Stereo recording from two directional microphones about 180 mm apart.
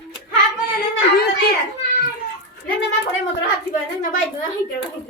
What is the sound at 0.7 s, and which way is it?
Speech, 60° left (ahead or behind).